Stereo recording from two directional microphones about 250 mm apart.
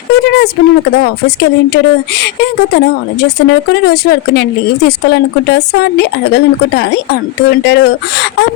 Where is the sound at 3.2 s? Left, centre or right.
Left.